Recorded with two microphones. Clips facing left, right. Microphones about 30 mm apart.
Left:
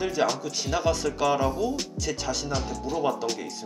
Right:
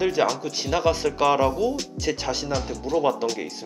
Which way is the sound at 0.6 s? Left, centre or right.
Centre.